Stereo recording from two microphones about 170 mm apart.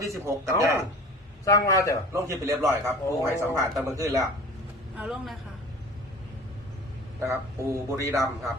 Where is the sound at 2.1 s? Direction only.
15° right (ahead or behind).